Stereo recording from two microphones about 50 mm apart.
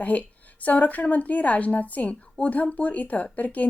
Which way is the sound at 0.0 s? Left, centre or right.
Left.